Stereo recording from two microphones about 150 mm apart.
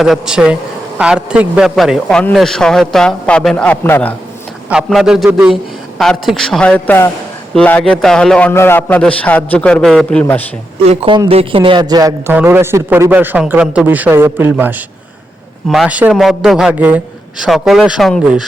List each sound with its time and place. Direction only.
0.0 s a man's voice: 5° right (ahead or behind); by 4.1 s 10° left (ahead or behind)
4.7 s a man's voice: 5° right (ahead or behind)
10.8 s speech: 35° right (ahead or behind)
12.3 s a man's voice: 15° right (ahead or behind)